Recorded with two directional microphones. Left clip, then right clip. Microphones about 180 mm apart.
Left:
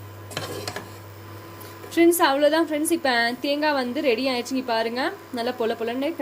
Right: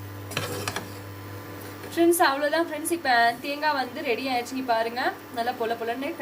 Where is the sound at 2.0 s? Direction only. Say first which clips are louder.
Left 3 dB; 40° left (ahead or behind).